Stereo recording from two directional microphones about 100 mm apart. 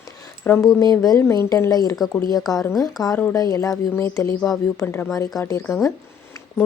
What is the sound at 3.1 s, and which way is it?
Speech, 20° left (ahead or behind).